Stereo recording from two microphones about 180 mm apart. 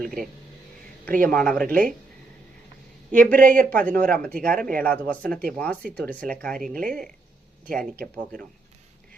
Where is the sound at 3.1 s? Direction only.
10° left (ahead or behind).